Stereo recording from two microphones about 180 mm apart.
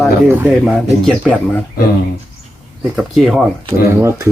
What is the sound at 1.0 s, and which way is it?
Speech, 5° left (ahead or behind).